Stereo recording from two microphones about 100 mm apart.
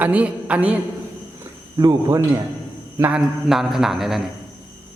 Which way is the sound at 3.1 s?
5° right (ahead or behind).